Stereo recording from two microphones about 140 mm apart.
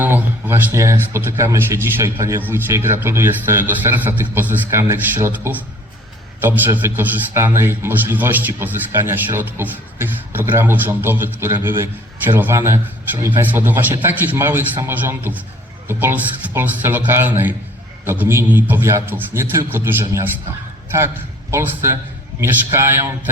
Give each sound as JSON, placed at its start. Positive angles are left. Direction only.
{"t": 0.0, "sound": "a man's voice", "side_deg": -15}
{"t": 6.7, "sound": "a man's voice", "side_deg": -15}
{"t": 21.5, "sound": "a man's voice", "side_deg": -20}